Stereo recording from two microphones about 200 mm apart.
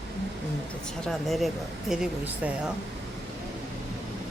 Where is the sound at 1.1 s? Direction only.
Centre (ahead or behind).